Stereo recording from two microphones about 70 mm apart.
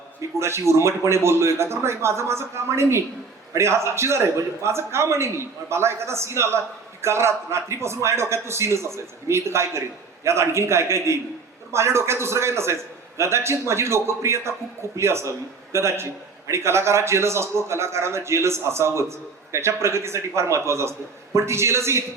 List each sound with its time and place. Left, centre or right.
0.3 s a man's voice: right